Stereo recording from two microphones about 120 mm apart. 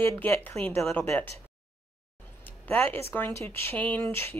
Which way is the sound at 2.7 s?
15° left (ahead or behind).